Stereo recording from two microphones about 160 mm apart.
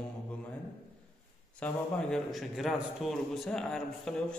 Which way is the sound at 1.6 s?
5° left (ahead or behind).